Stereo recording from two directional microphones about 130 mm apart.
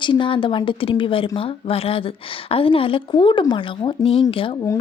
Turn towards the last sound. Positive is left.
turn(degrees=45)  # may be behind; listen again after turning